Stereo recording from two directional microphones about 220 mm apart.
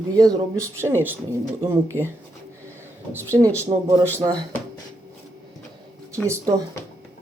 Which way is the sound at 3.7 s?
25° right (ahead or behind).